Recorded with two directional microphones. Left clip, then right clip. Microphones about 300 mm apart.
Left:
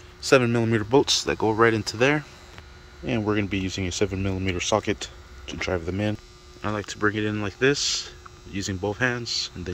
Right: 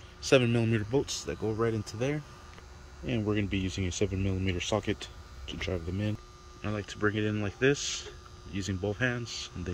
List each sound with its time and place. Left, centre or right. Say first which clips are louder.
0.2 s speech: left 6 dB; centre
1.2 s speech: left 11 dB; left
1.7 s speech: left 11 dB; centre
3.1 s speech: left 6 dB; centre